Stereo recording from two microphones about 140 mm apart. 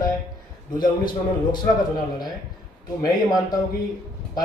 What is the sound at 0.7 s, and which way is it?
Speech, 30° left (ahead or behind).